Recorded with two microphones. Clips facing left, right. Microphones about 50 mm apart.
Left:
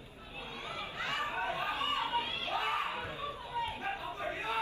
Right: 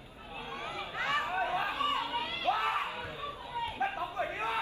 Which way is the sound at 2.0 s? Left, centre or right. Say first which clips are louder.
Left 1 dB; left.